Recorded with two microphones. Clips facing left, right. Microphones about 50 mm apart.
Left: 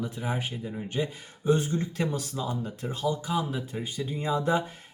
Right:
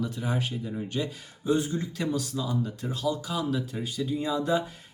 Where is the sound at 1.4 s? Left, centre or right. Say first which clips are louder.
Left 1 dB; left.